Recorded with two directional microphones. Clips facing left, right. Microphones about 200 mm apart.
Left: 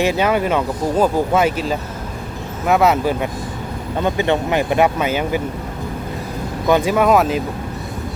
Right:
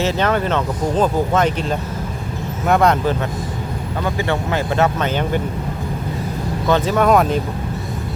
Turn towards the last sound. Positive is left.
turn(degrees=5)  # may be behind; listen again after turning